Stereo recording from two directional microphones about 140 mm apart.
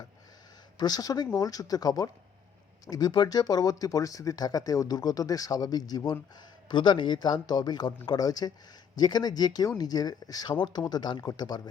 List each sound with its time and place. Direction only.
0.8 s speech: 30° left (ahead or behind)